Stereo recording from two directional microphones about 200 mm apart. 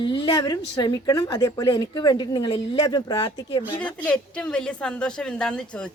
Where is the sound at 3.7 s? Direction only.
5° left (ahead or behind).